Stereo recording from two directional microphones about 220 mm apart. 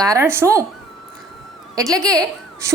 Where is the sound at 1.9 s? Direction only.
15° right (ahead or behind).